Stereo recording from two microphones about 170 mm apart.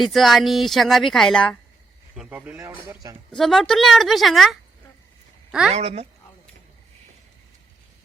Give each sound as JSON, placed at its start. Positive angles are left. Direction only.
{"t": 0.0, "sound": "a woman's voice", "side_deg": 0}
{"t": 2.1, "sound": "speech", "side_deg": -10}
{"t": 3.3, "sound": "a woman's voice", "side_deg": 0}
{"t": 5.7, "sound": "a woman's voice", "side_deg": -40}